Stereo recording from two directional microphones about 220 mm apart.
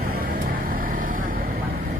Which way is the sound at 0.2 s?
40° right (ahead or behind).